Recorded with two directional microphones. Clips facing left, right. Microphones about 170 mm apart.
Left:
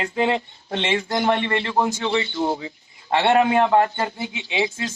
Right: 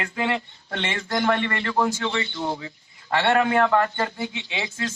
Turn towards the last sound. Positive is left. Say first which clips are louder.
# left 6 dB
turn(degrees=20)  # may be behind; listen again after turning